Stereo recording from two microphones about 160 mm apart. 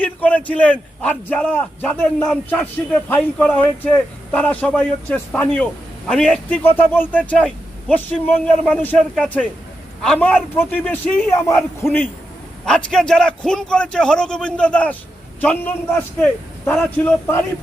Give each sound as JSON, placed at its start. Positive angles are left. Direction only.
{"t": 0.0, "sound": "a man's voice", "side_deg": 10}
{"t": 12.6, "sound": "a man's voice", "side_deg": 5}